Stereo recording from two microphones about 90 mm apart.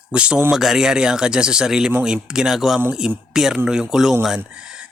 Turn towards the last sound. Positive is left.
turn(degrees=-10)  # may be behind; listen again after turning